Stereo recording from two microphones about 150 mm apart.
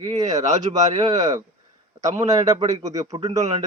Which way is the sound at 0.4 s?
55° right (ahead or behind).